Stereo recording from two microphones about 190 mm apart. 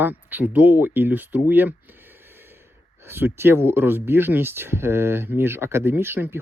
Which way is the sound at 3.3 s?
10° right (ahead or behind).